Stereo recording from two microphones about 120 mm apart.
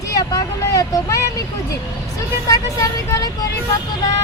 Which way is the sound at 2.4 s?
25° left (ahead or behind).